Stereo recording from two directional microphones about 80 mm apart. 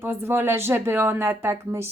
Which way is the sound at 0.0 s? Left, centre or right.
Right.